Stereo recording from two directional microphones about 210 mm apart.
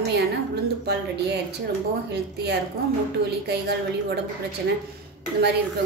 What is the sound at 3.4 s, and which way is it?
Speech, 50° right (ahead or behind).